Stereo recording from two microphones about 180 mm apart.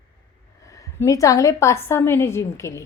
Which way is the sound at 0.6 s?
15° left (ahead or behind).